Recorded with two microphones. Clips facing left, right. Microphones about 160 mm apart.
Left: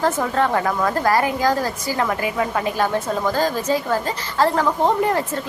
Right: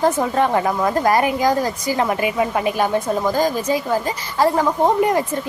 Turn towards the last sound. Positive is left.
turn(degrees=-15)  # may be behind; listen again after turning